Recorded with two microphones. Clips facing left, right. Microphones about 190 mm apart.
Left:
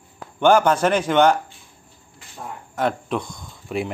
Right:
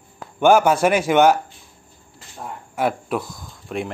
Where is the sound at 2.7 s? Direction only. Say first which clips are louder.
Right 1 dB; 5° right (ahead or behind).